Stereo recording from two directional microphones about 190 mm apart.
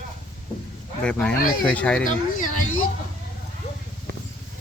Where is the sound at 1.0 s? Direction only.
5° left (ahead or behind).